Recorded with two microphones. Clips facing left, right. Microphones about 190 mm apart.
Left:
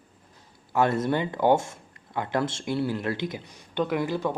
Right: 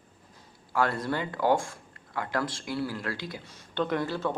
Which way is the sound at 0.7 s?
20° left (ahead or behind).